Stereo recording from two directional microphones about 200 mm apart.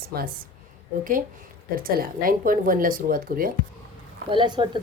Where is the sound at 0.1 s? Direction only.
50° right (ahead or behind).